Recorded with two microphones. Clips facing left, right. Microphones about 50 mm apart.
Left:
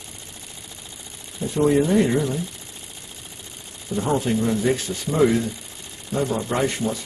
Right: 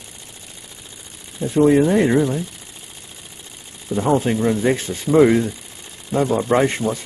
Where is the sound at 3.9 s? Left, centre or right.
Right.